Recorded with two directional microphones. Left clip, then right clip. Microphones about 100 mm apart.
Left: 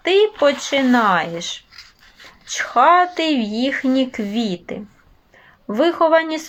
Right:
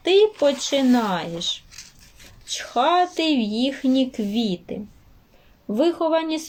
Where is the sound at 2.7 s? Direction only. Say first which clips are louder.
Left 6 dB; 40° right (ahead or behind).